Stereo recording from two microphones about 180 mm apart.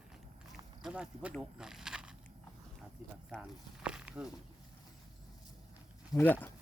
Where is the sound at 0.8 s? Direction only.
5° right (ahead or behind).